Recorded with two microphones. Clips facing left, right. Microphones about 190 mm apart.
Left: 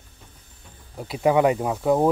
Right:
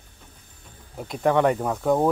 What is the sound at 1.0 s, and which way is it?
Speech, 5° left (ahead or behind).